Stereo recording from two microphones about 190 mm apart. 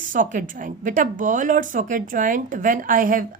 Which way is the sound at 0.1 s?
45° right (ahead or behind).